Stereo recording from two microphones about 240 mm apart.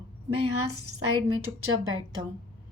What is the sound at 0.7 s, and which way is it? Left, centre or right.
Speech, right.